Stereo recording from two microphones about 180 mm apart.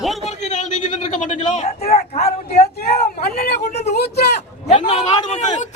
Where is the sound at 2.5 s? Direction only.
60° left (ahead or behind).